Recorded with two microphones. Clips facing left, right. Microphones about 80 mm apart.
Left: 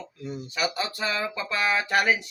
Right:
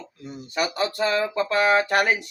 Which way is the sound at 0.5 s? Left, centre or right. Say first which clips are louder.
Right 5 dB; right.